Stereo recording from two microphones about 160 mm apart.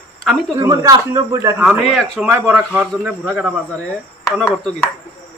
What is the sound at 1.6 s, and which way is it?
Speech, centre (ahead or behind).